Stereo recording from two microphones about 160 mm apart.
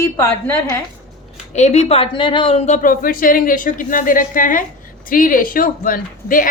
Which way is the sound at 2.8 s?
60° left (ahead or behind).